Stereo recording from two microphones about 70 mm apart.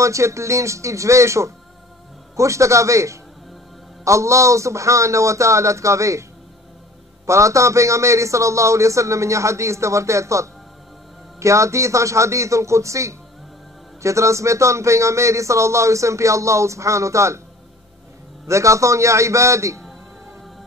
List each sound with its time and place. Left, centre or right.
0.0 s speech: right
7.2 s speech: right
18.5 s speech: right